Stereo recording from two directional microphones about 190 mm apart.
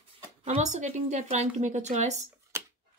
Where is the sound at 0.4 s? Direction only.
35° right (ahead or behind).